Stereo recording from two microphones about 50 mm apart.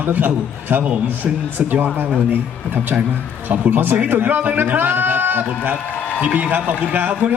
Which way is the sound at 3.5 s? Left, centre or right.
Right.